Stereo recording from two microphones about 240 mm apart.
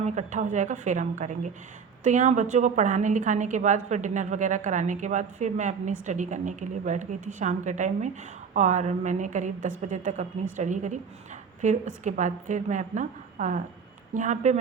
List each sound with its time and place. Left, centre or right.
0.0 s a woman's voice: right